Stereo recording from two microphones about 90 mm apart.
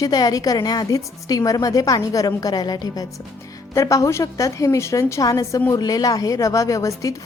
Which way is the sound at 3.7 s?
40° left (ahead or behind).